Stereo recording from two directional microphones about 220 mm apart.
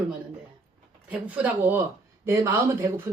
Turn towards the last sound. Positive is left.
turn(degrees=-15)  # may be behind; listen again after turning